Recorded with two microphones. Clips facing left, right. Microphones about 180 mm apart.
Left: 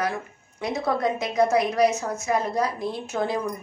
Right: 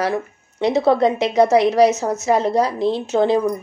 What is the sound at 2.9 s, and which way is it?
Speech, 30° right (ahead or behind).